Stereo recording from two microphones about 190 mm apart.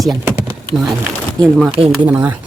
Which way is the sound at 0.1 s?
15° right (ahead or behind).